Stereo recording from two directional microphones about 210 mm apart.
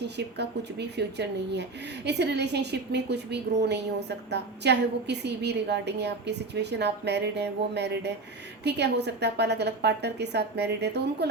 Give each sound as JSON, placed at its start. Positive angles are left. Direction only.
{"t": 0.2, "sound": "a woman's voice", "side_deg": -55}